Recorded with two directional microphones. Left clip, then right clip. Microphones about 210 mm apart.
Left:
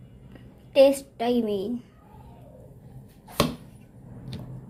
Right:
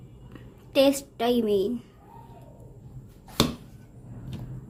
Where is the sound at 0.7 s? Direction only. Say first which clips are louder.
Left 4 dB; 20° right (ahead or behind).